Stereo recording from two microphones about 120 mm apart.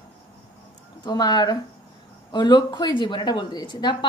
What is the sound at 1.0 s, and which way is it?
A woman's voice, 35° left (ahead or behind).